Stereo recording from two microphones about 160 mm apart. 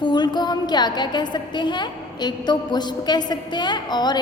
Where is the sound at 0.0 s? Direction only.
25° left (ahead or behind).